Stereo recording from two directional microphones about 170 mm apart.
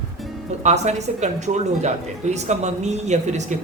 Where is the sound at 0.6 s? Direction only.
40° right (ahead or behind).